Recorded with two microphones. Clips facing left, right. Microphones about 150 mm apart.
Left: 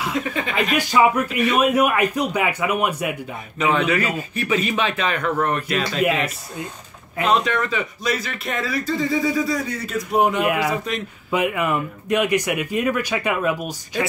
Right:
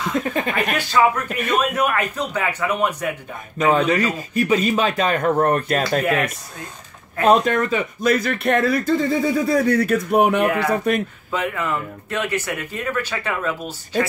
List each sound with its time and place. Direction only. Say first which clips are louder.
0.2 s speech: right 1 dB; 45° right (ahead or behind)
0.7 s speech: left 2 dB; 15° left (ahead or behind)
3.5 s a man's voice: right 2 dB; 40° right (ahead or behind)
7.2 s speech: right 4 dB; 50° right (ahead or behind)
11.3 s speech: left 3 dB; 15° left (ahead or behind)